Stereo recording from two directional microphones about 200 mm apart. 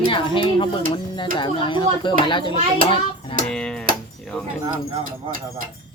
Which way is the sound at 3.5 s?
5° left (ahead or behind).